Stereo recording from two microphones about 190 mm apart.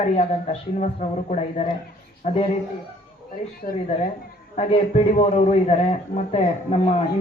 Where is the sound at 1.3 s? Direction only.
35° left (ahead or behind).